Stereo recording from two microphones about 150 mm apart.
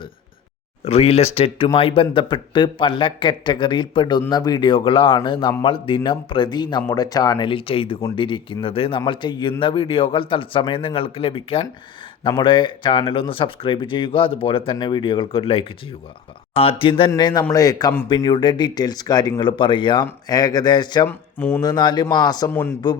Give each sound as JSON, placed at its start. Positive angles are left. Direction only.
{"t": 0.9, "sound": "a man's voice", "side_deg": 45}
{"t": 21.1, "sound": "speech", "side_deg": 10}
{"t": 21.6, "sound": "speech", "side_deg": 30}